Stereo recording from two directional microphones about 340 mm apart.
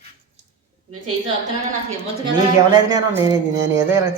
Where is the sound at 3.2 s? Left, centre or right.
Centre.